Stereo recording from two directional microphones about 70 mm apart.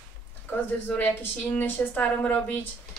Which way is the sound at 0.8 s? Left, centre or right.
Left.